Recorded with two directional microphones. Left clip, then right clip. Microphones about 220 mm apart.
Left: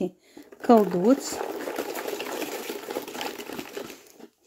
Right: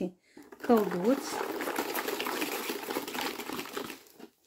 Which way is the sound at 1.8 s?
5° right (ahead or behind).